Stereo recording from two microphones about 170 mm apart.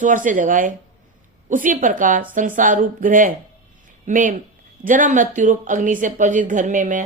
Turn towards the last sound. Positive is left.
turn(degrees=-50)  # may be behind; listen again after turning